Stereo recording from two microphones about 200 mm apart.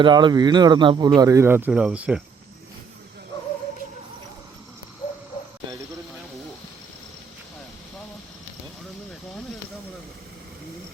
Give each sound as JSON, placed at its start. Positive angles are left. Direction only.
{"t": 0.0, "sound": "speech", "side_deg": -20}